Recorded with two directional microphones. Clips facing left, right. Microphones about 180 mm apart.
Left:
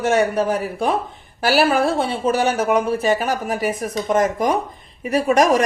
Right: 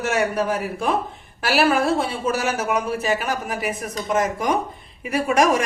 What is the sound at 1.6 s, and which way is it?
Speech, 30° left (ahead or behind).